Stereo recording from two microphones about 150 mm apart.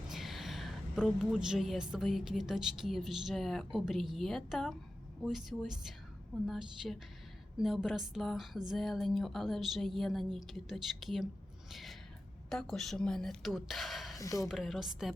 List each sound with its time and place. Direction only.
0.1 s a woman's voice: centre (ahead or behind)
11.7 s a sound: centre (ahead or behind)
12.5 s a woman's voice: centre (ahead or behind)
14.2 s speech: 20° left (ahead or behind)
14.4 s a woman's voice: centre (ahead or behind)